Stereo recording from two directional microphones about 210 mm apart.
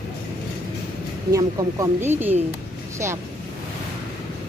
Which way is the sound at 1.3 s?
15° right (ahead or behind).